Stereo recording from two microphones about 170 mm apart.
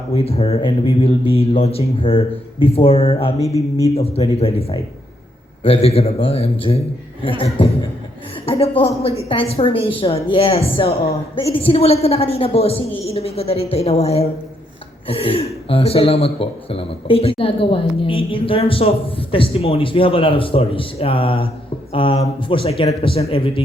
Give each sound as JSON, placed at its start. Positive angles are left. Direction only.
{"t": 0.1, "sound": "speech", "side_deg": 35}
{"t": 3.4, "sound": "speech", "side_deg": -20}
{"t": 3.9, "sound": "speech", "side_deg": 35}
{"t": 8.4, "sound": "speech", "side_deg": 35}